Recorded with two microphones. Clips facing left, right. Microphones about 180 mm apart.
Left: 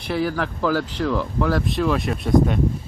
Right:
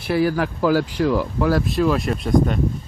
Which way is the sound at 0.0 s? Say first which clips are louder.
Right 4 dB; 10° right (ahead or behind).